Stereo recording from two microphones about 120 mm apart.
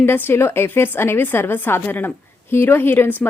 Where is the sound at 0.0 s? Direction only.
20° left (ahead or behind).